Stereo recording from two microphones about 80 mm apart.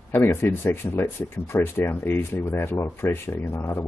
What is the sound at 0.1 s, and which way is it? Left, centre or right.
Speech, left.